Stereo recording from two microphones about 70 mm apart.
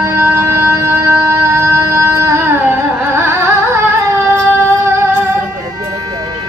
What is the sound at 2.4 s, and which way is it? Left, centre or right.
Carnatic music, right.